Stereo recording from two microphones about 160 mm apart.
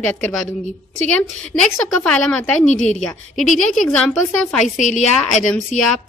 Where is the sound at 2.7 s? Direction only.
45° left (ahead or behind).